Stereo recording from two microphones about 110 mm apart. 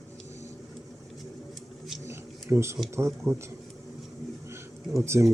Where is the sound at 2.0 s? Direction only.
25° right (ahead or behind).